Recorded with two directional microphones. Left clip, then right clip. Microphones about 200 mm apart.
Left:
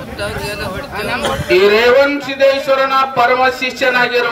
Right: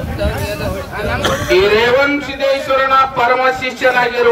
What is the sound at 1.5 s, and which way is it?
A man's voice, 40° left (ahead or behind).